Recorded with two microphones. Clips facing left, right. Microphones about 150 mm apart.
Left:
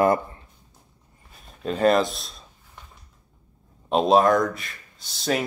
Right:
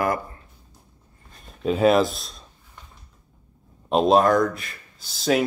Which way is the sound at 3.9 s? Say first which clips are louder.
Right 1 dB; centre (ahead or behind).